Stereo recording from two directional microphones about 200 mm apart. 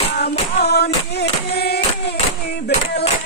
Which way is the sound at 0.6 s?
55° left (ahead or behind).